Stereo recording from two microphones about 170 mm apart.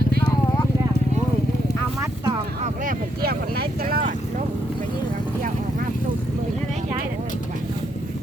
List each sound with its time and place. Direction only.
2.8 s speech: 65° right (ahead or behind)